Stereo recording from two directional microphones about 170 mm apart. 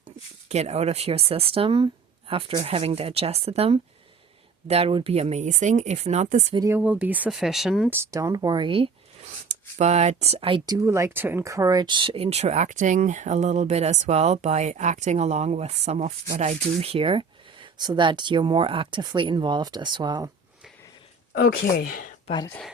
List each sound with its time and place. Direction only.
0.4 s speech: 40° right (ahead or behind)
6.5 s speech: 20° right (ahead or behind)
6.7 s speech: 10° right (ahead or behind)
7.9 s speech: 15° right (ahead or behind)
21.3 s speech: 60° left (ahead or behind)
22.3 s speech: 25° left (ahead or behind)